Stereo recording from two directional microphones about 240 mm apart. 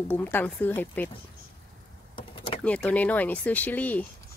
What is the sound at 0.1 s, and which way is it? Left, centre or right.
Speech, centre.